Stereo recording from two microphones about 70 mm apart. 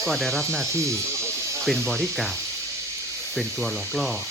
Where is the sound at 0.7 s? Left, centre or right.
Right.